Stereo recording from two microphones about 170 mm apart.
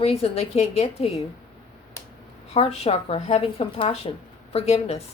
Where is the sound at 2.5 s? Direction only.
35° left (ahead or behind).